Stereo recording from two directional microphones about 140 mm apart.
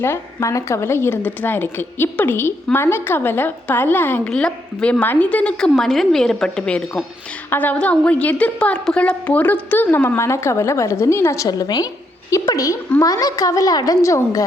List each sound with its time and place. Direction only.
0.0 s a woman's voice: 20° left (ahead or behind)